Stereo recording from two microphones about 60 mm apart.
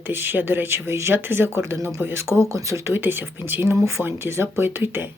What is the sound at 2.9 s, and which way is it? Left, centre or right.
Speech, right.